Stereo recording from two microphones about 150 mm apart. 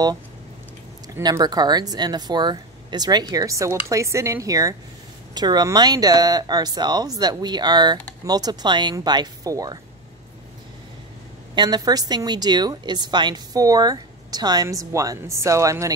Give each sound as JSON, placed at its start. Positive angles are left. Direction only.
{"t": 1.0, "sound": "speech", "side_deg": -20}
{"t": 11.5, "sound": "speech", "side_deg": -30}